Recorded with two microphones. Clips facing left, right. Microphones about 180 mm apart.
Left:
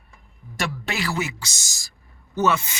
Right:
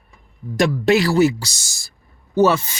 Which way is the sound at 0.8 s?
35° right (ahead or behind).